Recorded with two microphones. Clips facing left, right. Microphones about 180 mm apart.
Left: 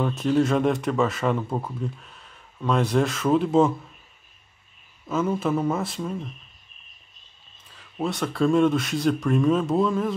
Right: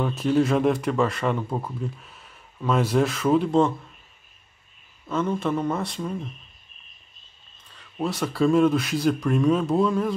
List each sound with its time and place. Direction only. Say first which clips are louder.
0.0 s speech: even; centre (ahead or behind)
5.0 s speech: left 1 dB; 5° left (ahead or behind)
7.7 s speech: even; centre (ahead or behind)